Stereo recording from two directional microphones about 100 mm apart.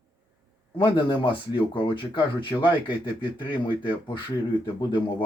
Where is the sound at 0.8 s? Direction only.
55° left (ahead or behind).